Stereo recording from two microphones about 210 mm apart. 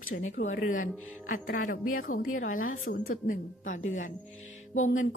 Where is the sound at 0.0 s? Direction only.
35° left (ahead or behind).